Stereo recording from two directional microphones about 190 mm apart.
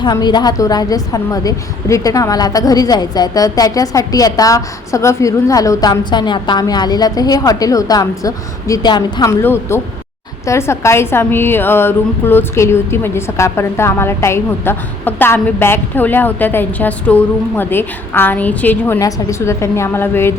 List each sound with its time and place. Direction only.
0.0 s a woman's voice: 20° left (ahead or behind)